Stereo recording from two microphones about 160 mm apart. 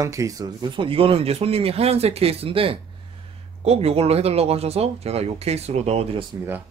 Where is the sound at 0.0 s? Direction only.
20° right (ahead or behind); by 6.2 s 40° right (ahead or behind).